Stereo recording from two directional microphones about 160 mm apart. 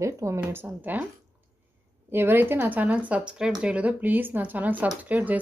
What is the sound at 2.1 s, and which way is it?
Speech, 15° right (ahead or behind).